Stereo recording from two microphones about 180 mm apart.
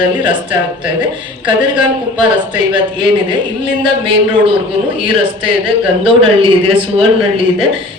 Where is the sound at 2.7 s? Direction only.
25° right (ahead or behind).